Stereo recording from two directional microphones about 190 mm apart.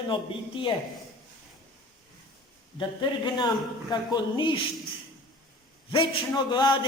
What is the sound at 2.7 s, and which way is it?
A man's voice, 25° left (ahead or behind).